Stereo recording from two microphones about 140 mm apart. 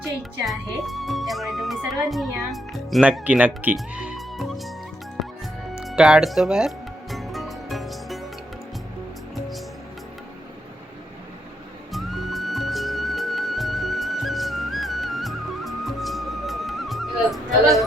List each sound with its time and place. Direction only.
0.4 s speech: centre (ahead or behind)
5.7 s music: centre (ahead or behind)
11.9 s music: centre (ahead or behind)